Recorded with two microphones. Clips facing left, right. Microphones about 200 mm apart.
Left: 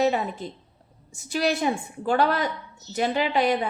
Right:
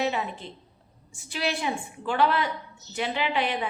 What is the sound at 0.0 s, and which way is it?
A woman's voice, 40° left (ahead or behind).